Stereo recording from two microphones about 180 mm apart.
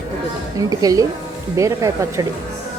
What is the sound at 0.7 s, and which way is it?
Speech, 20° right (ahead or behind).